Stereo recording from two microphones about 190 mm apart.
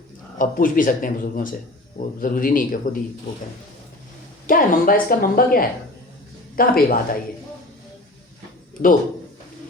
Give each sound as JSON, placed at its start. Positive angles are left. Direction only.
{"t": 0.3, "sound": "speech", "side_deg": 45}
{"t": 4.4, "sound": "speech", "side_deg": 50}